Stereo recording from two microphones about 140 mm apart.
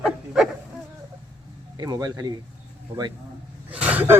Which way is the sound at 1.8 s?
30° right (ahead or behind).